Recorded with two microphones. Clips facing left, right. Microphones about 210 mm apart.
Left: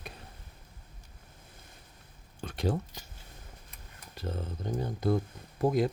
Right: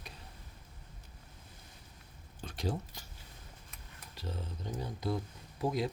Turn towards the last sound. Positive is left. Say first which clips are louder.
# left 6 dB
turn(degrees=50)  # may be behind; listen again after turning